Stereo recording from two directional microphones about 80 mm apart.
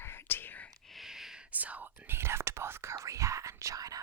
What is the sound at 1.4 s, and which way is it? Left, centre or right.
Speech, centre.